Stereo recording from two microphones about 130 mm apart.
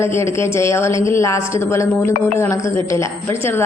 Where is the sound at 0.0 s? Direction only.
20° left (ahead or behind).